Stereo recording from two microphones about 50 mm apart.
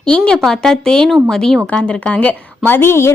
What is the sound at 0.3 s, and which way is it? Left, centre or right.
A woman's voice, centre.